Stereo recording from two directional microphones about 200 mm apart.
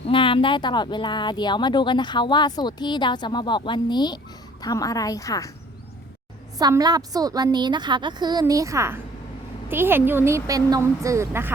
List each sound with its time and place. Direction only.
0.1 s a woman's voice: 25° left (ahead or behind)
6.6 s a woman's voice: 20° right (ahead or behind)